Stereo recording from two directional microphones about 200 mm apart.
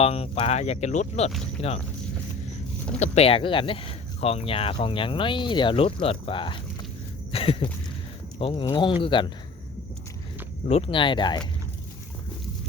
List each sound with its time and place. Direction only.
0.0 s speech: 30° left (ahead or behind)
3.0 s speech: 30° left (ahead or behind)
7.3 s a sound: 30° left (ahead or behind)
8.4 s speech: 25° left (ahead or behind)
10.7 s speech: 30° left (ahead or behind)